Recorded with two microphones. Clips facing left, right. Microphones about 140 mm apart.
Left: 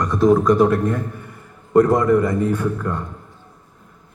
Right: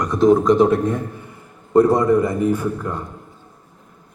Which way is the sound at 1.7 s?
10° right (ahead or behind).